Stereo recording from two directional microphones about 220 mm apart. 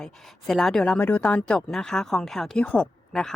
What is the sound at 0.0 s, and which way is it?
Speech, centre (ahead or behind).